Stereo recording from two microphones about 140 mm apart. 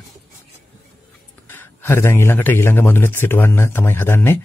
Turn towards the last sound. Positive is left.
turn(degrees=15)  # may be behind; listen again after turning